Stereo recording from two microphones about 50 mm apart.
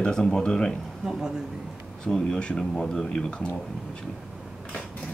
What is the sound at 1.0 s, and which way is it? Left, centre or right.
Speech, centre.